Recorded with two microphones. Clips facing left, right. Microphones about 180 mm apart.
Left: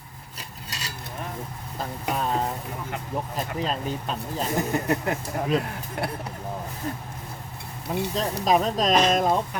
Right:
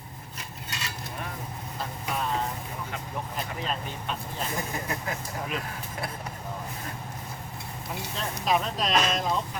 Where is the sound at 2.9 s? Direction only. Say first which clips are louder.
Left 6 dB; 45° left (ahead or behind).